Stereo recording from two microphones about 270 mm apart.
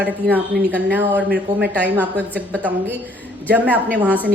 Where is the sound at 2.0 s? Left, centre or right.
Centre.